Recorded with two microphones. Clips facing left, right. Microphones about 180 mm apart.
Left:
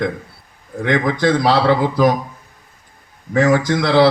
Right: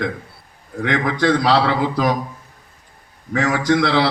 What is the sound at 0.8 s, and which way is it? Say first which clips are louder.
Speech: left 2 dB; 60° right (ahead or behind).